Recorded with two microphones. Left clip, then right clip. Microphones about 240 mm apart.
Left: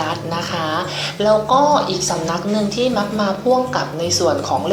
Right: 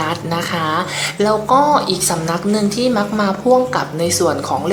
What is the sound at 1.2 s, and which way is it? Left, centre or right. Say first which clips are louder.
A woman's voice: even; right.